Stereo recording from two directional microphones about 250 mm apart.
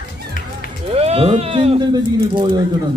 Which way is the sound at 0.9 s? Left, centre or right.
Right.